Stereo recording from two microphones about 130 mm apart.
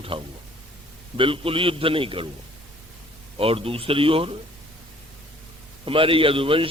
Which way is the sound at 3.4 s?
45° right (ahead or behind).